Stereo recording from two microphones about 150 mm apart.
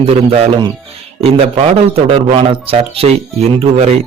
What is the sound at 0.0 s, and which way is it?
Speech, 40° right (ahead or behind).